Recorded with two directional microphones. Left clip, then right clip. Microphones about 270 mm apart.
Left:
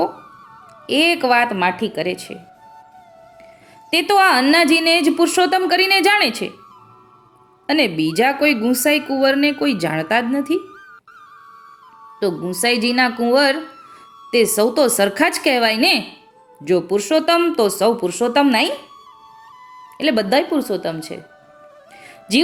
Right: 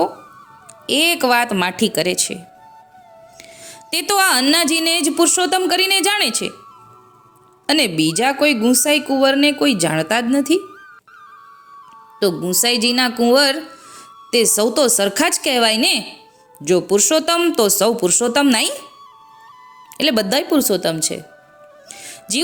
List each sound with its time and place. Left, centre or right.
0.9 s a woman's voice: centre
3.8 s a woman's voice: right
7.7 s a woman's voice: right
12.2 s a woman's voice: centre
20.0 s a woman's voice: right
21.9 s music: right